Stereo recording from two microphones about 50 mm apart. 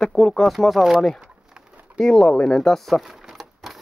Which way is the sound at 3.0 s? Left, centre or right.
Centre.